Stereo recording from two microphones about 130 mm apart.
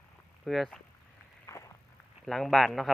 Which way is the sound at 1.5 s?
25° left (ahead or behind).